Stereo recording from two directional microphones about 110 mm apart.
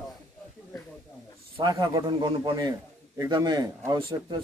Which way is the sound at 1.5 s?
40° right (ahead or behind).